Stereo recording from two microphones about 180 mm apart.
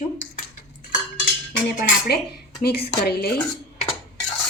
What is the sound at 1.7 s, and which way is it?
Speech, 60° left (ahead or behind).